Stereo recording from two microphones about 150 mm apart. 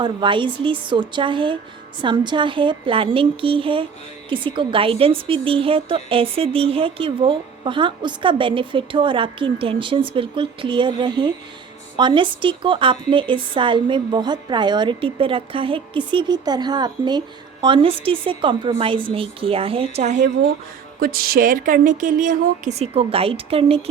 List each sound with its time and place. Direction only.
0.0 s a woman's voice: 30° right (ahead or behind); by 20.3 s 50° right (ahead or behind)
21.0 s speech: 80° right; by 22.7 s 60° right (ahead or behind)
22.8 s a woman's voice: 40° right (ahead or behind)